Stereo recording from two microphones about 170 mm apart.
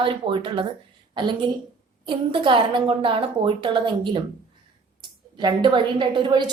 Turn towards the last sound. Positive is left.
turn(degrees=-30)  # may be behind; listen again after turning